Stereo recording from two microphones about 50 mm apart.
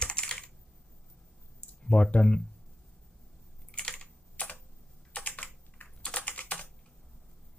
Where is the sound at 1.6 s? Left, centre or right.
Centre.